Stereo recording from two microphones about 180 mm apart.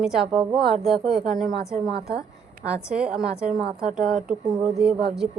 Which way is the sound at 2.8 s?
5° right (ahead or behind).